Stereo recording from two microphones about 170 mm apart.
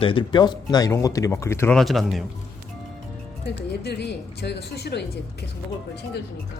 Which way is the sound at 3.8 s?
80° left.